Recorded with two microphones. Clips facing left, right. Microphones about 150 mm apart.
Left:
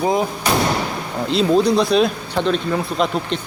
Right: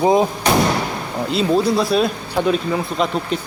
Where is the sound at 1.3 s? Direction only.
5° right (ahead or behind).